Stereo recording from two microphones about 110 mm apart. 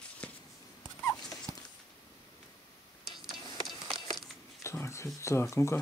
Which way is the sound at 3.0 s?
Centre (ahead or behind).